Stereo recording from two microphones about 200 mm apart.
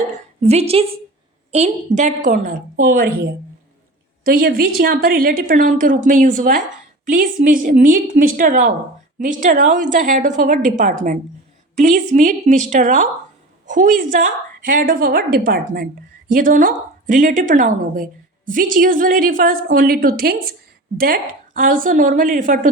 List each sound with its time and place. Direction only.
0.4 s a woman's voice: 30° right (ahead or behind)
4.3 s a woman's voice: 45° right (ahead or behind)